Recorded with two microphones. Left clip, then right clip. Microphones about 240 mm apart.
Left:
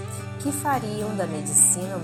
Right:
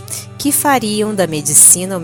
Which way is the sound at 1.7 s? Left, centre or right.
Right.